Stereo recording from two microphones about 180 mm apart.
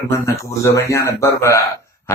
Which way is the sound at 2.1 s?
15° left (ahead or behind).